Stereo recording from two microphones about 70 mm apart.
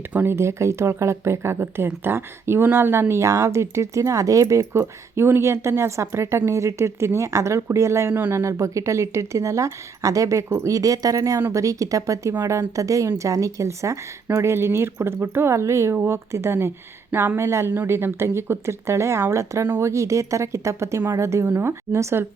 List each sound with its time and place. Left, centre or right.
0.1 s a woman's voice: right
4.8 s a woman's voice: right